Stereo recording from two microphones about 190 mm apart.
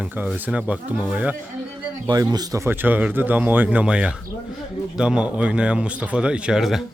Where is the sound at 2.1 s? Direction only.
20° right (ahead or behind); by 6.9 s centre (ahead or behind).